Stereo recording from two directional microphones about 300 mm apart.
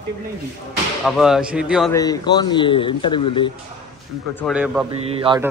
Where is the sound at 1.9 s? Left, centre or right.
Centre.